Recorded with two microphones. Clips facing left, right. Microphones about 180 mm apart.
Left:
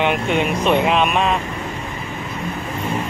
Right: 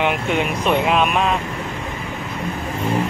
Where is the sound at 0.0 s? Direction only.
5° right (ahead or behind).